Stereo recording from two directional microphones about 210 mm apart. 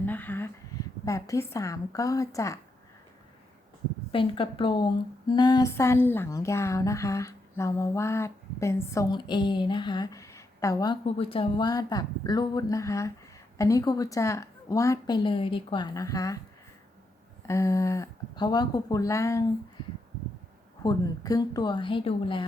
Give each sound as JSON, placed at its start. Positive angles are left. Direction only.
{"t": 0.0, "sound": "a sound", "side_deg": 10}
{"t": 1.0, "sound": "speech", "side_deg": 15}
{"t": 4.1, "sound": "a woman's voice", "side_deg": 25}
{"t": 17.4, "sound": "speech", "side_deg": 15}
{"t": 20.8, "sound": "a woman's voice", "side_deg": 15}